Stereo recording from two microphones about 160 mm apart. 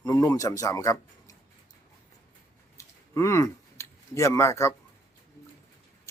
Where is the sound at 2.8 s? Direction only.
15° left (ahead or behind).